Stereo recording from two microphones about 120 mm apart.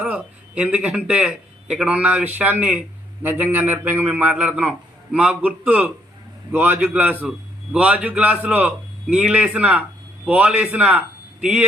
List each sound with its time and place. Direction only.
0.0 s a man's voice: 10° right (ahead or behind)